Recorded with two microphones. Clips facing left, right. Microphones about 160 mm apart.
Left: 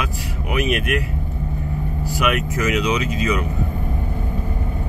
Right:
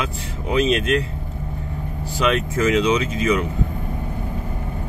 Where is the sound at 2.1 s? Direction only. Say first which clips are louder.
Right 1 dB; 10° left (ahead or behind).